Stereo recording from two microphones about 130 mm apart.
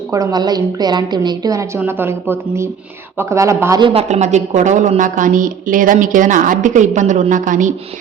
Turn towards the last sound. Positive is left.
turn(degrees=-80)